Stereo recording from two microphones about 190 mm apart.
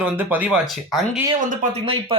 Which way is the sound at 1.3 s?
45° right (ahead or behind).